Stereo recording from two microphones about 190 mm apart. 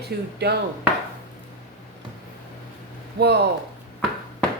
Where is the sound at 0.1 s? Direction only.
55° right (ahead or behind).